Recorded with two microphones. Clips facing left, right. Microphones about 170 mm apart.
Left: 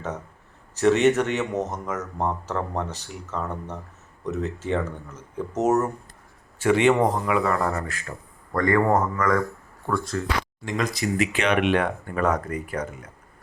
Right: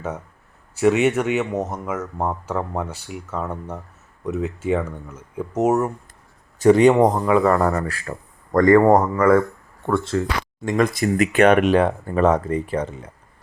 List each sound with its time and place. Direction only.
0.8 s speech: 10° right (ahead or behind)
6.6 s speech: 40° right (ahead or behind)
10.7 s speech: 50° right (ahead or behind); by 13.1 s 25° right (ahead or behind)